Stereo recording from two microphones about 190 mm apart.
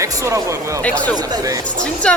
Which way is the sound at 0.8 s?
5° left (ahead or behind).